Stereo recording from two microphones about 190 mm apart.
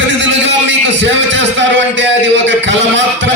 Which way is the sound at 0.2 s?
70° right (ahead or behind).